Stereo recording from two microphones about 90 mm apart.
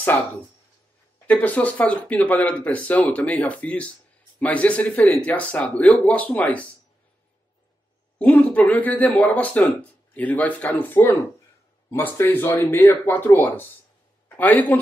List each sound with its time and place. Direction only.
0.1 s speech: 15° left (ahead or behind)
8.2 s a man's voice: 15° left (ahead or behind)